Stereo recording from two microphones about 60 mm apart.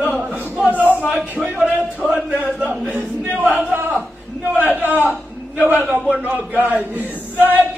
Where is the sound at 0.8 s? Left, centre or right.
Left.